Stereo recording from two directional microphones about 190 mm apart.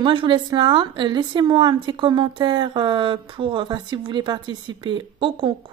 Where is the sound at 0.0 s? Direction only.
25° right (ahead or behind).